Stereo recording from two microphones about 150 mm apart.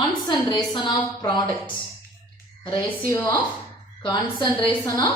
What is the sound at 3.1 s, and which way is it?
Speech, 15° left (ahead or behind).